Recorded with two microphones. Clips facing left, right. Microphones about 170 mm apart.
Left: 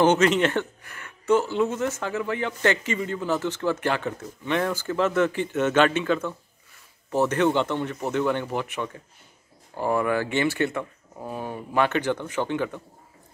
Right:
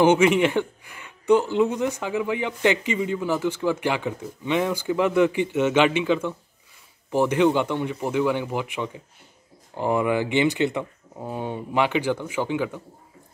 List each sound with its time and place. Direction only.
0.0 s speech: 10° right (ahead or behind)